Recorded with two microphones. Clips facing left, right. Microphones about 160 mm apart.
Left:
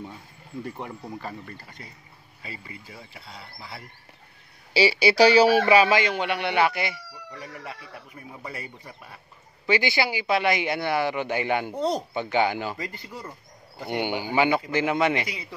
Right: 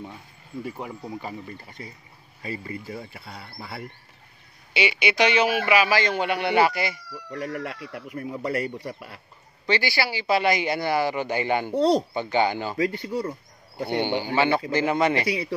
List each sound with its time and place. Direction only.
0.7 s speech: 5° right (ahead or behind)
1.5 s speech: 25° right (ahead or behind)
2.4 s speech: 50° right (ahead or behind)
4.7 s speech: 35° left (ahead or behind)
6.0 s speech: centre (ahead or behind)
7.2 s speech: 65° right (ahead or behind)
9.7 s speech: 20° left (ahead or behind)
10.2 s speech: centre (ahead or behind)
11.7 s speech: 70° right (ahead or behind)
12.1 s speech: centre (ahead or behind)
12.7 s speech: 70° right (ahead or behind)
13.9 s speech: 10° left (ahead or behind)
14.7 s speech: centre (ahead or behind)